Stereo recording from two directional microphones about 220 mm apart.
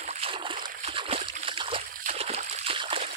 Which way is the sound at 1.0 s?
25° right (ahead or behind).